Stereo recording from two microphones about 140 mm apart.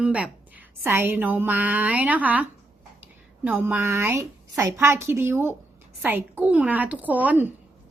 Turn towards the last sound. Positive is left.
turn(degrees=-10)  # may be behind; listen again after turning